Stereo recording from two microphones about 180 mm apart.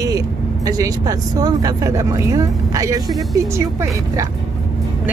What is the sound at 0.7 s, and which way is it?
Speech, 20° right (ahead or behind).